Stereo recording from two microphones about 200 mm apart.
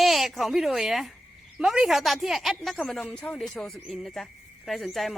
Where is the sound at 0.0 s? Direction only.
Centre (ahead or behind).